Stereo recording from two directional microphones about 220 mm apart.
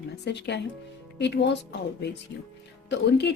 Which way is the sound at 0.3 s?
50° left (ahead or behind).